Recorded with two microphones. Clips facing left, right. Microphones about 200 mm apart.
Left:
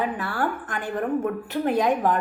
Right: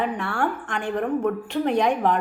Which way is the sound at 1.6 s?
5° left (ahead or behind).